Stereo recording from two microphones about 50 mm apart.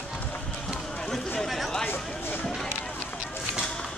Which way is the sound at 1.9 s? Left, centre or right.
Left.